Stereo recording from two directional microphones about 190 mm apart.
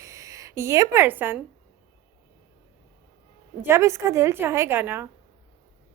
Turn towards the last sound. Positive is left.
turn(degrees=-10)  # may be behind; listen again after turning